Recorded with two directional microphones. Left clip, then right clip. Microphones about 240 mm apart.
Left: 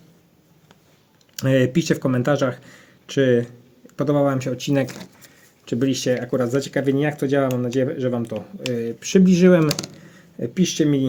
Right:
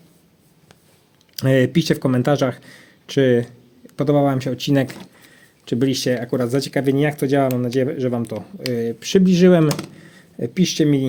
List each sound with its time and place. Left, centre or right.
1.4 s speech: right